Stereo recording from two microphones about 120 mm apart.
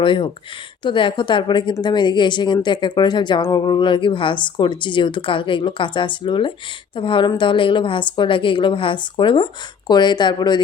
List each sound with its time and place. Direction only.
0.0 s a woman's voice: 45° left (ahead or behind)